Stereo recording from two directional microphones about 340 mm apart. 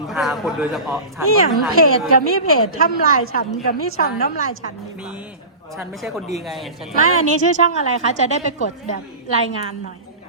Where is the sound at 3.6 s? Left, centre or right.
Left.